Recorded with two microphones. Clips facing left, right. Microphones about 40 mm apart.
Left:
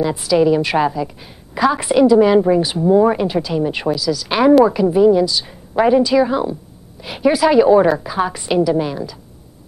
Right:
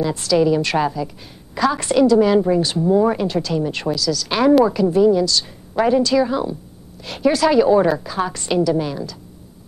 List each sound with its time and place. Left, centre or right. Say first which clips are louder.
0.0 s a woman's voice: left 2 dB; centre